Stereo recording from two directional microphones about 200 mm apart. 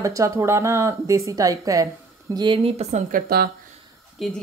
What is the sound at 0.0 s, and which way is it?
Speech, 15° right (ahead or behind).